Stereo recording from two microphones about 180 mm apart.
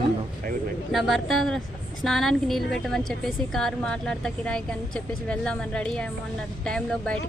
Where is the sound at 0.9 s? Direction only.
Centre (ahead or behind).